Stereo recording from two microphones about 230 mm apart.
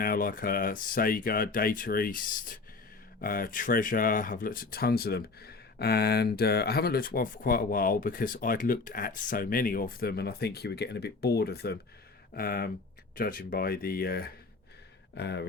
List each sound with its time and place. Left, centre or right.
0.0 s speech: left